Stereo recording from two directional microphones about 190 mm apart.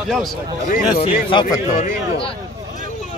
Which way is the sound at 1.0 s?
25° left (ahead or behind).